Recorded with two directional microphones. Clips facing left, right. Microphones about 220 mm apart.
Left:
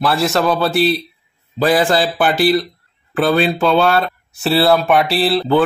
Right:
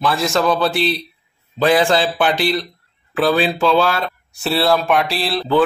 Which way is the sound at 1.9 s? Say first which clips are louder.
Left 1 dB; 40° left (ahead or behind).